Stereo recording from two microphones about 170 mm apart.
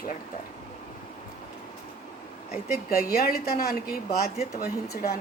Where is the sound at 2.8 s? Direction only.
60° left (ahead or behind).